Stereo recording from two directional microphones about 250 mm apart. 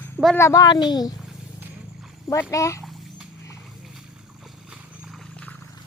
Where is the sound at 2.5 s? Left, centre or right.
Centre.